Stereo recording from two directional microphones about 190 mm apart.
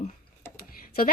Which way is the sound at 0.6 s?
50° left (ahead or behind).